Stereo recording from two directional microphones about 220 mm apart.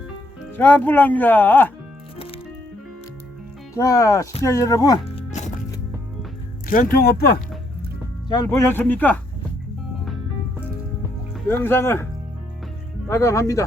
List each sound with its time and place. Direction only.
0.5 s speech: 5° left (ahead or behind)
3.8 s speech: 15° left (ahead or behind)
5.0 s music: 30° left (ahead or behind)
6.7 s speech: 40° left (ahead or behind)
8.4 s speech: 10° left (ahead or behind)
11.4 s speech: 10° left (ahead or behind)
13.1 s speech: 15° left (ahead or behind)